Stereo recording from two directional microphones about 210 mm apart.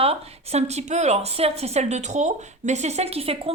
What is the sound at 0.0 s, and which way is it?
A woman's voice, 30° right (ahead or behind).